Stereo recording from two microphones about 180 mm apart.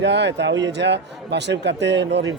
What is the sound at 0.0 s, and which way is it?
Speech, 75° right (ahead or behind).